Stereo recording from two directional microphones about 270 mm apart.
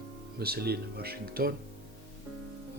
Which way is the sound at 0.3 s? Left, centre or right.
Right.